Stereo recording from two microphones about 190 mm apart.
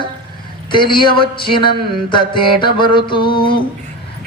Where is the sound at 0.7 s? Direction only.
25° left (ahead or behind).